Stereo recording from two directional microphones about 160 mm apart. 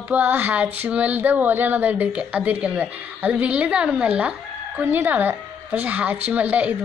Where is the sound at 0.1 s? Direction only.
10° right (ahead or behind).